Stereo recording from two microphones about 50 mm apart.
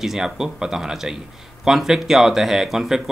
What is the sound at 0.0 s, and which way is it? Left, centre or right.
Speech, centre.